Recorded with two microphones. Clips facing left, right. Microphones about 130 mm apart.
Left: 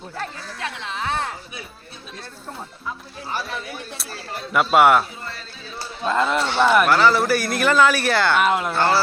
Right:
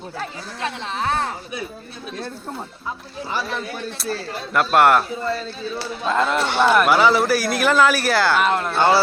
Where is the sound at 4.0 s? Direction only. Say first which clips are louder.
Right 6 dB; centre (ahead or behind).